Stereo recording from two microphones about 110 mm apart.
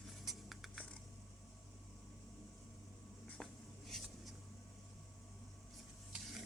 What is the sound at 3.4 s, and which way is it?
Writing, centre (ahead or behind).